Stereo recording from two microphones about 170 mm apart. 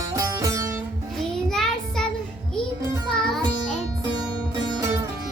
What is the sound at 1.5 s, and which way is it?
Child singing, 5° left (ahead or behind).